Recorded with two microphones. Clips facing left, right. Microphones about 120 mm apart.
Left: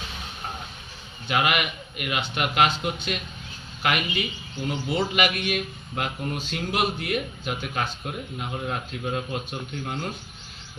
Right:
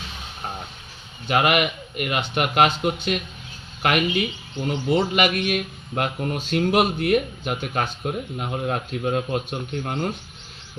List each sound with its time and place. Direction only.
1.3 s a man's voice: 45° right (ahead or behind)